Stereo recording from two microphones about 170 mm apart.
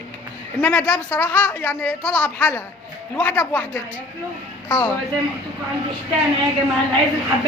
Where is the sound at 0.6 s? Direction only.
10° left (ahead or behind).